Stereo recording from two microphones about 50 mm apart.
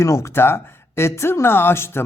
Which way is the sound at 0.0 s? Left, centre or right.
Left.